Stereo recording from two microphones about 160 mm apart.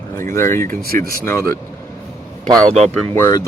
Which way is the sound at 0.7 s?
65° right (ahead or behind).